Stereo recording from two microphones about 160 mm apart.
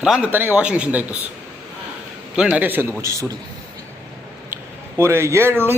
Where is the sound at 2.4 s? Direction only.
10° right (ahead or behind).